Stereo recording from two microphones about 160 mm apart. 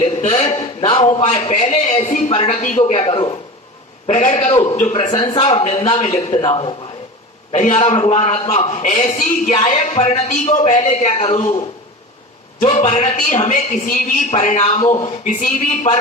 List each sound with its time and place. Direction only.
0.0 s a man's voice: 45° left (ahead or behind)
1.5 s a man's voice: 45° left (ahead or behind)
5.1 s speech: 30° left (ahead or behind)
5.4 s a man's voice: 40° left (ahead or behind)
12.5 s a man's voice: 45° left (ahead or behind)
15.2 s a man's voice: 55° left (ahead or behind)